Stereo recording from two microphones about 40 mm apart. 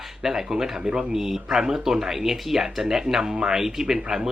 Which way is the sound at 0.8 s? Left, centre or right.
Right.